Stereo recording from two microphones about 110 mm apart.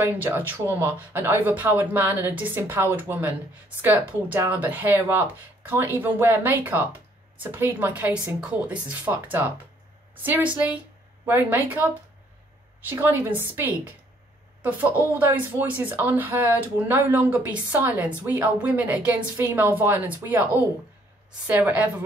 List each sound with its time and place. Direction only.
0.0 s a woman's voice: 20° right (ahead or behind)
21.5 s speech: 15° right (ahead or behind)